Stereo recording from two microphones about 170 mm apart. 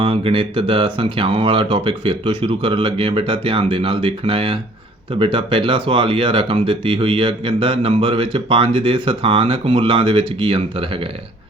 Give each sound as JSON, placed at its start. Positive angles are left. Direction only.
{"t": 0.0, "sound": "speech", "side_deg": -30}